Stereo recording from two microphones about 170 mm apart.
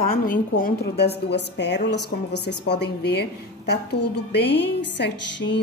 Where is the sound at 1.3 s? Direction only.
85° left.